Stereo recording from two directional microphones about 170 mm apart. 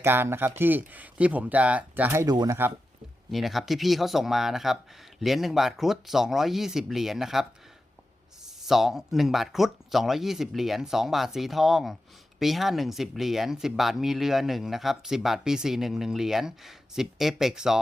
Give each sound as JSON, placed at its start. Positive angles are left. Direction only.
{"t": 0.0, "sound": "speech", "side_deg": -15}
{"t": 2.3, "sound": "speech", "side_deg": -25}
{"t": 3.3, "sound": "speech", "side_deg": 0}
{"t": 8.6, "sound": "speech", "side_deg": 0}